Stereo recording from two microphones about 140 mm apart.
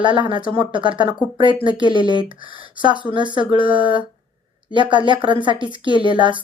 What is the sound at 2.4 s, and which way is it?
Speech, 40° right (ahead or behind).